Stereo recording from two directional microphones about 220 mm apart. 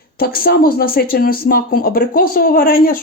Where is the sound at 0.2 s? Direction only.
45° left (ahead or behind).